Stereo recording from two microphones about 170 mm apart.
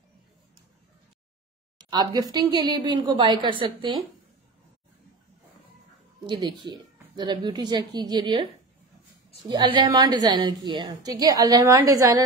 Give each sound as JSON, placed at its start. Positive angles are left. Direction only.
{"t": 1.8, "sound": "a woman's voice", "side_deg": -25}
{"t": 6.2, "sound": "a woman's voice", "side_deg": -25}
{"t": 9.5, "sound": "a woman's voice", "side_deg": -30}